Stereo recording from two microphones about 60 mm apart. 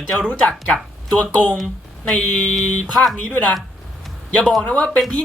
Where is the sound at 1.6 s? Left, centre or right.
Centre.